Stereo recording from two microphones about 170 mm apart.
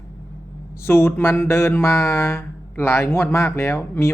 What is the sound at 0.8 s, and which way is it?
Speech, 15° left (ahead or behind).